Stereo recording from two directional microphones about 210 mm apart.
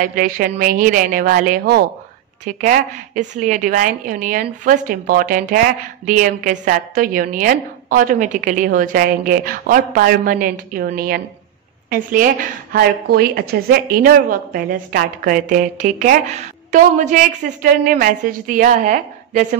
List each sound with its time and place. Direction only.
0.0 s a woman's voice: 40° right (ahead or behind)